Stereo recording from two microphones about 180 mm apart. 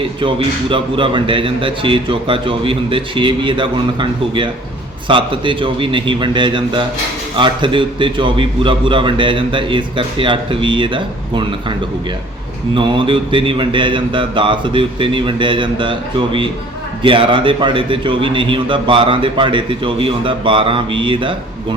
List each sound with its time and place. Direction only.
0.2 s a man's voice: 30° right (ahead or behind)
12.7 s a man's voice: 30° right (ahead or behind)